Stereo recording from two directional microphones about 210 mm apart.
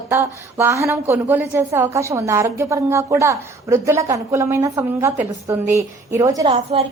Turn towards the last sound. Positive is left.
turn(degrees=-30)  # may be behind; listen again after turning